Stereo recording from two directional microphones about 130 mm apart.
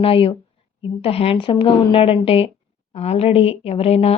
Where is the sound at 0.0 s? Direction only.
45° left (ahead or behind).